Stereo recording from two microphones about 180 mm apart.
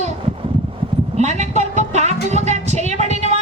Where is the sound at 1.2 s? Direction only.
40° right (ahead or behind).